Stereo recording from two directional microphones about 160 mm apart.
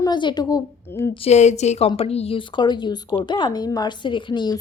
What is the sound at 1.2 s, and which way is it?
A woman's voice, 45° left (ahead or behind).